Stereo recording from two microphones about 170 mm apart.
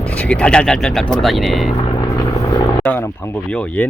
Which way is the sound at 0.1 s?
5° left (ahead or behind).